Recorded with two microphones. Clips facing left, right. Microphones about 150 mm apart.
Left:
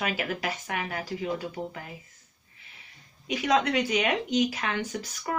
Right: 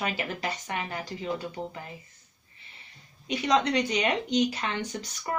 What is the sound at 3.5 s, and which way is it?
Speech, 5° left (ahead or behind).